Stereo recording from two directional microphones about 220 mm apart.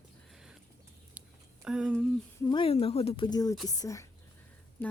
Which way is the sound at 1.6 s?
5° right (ahead or behind).